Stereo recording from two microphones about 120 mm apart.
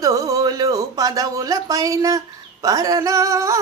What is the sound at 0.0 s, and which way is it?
Speech, 30° right (ahead or behind).